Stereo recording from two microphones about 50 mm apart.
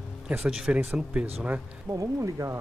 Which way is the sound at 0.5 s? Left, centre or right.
Centre.